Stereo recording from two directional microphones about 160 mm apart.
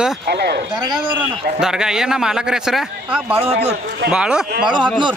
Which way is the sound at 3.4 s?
40° right (ahead or behind).